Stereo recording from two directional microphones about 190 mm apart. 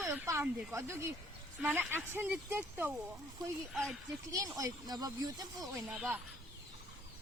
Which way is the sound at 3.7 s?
Centre (ahead or behind).